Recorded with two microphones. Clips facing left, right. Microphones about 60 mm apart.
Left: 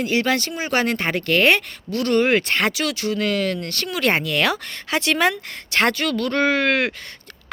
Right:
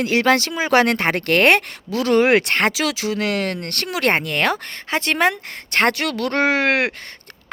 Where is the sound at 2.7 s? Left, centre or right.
Right.